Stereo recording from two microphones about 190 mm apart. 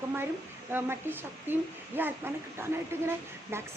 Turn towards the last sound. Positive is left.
turn(degrees=-15)  # may be behind; listen again after turning